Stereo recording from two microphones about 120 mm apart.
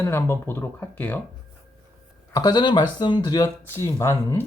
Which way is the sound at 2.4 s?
35° left (ahead or behind).